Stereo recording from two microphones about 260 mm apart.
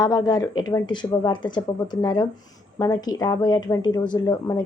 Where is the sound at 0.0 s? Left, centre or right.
Centre.